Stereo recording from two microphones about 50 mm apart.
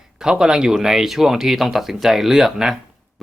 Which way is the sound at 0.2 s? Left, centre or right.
Centre.